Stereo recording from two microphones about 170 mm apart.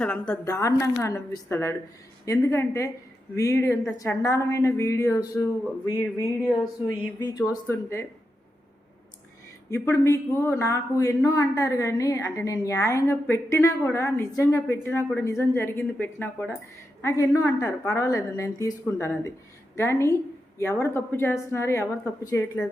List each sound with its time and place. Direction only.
0.0 s a woman's voice: 5° left (ahead or behind)
0.4 s a woman's voice: 20° left (ahead or behind)
9.6 s a woman's voice: 15° left (ahead or behind)